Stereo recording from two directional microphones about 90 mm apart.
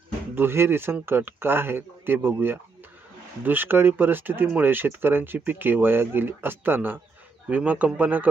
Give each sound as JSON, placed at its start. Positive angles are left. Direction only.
{"t": 0.3, "sound": "speech", "side_deg": -25}